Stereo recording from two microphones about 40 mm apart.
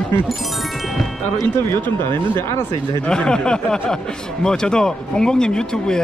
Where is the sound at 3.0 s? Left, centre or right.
Centre.